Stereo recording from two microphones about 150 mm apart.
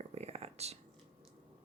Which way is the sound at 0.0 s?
45° right (ahead or behind).